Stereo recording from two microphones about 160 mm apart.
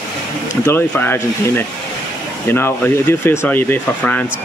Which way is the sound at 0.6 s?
15° left (ahead or behind).